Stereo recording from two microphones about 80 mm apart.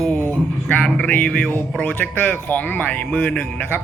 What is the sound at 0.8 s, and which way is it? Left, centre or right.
Speech, centre.